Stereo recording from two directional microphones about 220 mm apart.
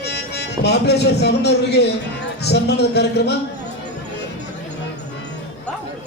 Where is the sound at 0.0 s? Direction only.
50° left (ahead or behind).